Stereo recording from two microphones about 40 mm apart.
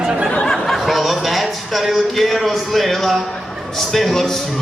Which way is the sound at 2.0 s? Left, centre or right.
Centre.